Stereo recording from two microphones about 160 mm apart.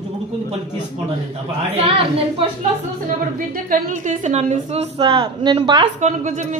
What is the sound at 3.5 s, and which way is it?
A woman's voice, 55° right (ahead or behind).